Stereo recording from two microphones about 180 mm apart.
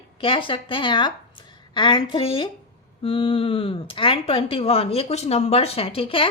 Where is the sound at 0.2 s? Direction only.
30° left (ahead or behind).